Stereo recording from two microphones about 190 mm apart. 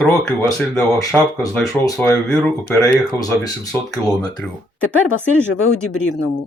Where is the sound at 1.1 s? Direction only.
15° left (ahead or behind).